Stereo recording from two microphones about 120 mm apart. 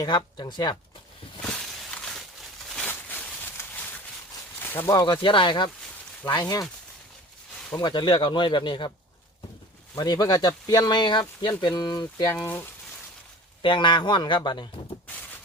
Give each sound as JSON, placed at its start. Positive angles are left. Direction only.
{"t": 0.0, "sound": "speech", "side_deg": 40}
{"t": 1.4, "sound": "a sound", "side_deg": 5}
{"t": 4.9, "sound": "speech", "side_deg": 35}
{"t": 7.8, "sound": "speech", "side_deg": 40}
{"t": 9.9, "sound": "speech", "side_deg": 30}
{"t": 13.6, "sound": "speech", "side_deg": 40}